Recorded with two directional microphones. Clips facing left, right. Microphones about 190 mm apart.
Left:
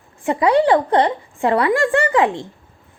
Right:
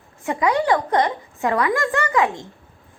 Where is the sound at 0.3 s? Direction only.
30° left (ahead or behind).